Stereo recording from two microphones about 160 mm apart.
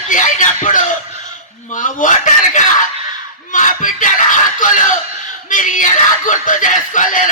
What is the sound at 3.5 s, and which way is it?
Speech, 55° left (ahead or behind).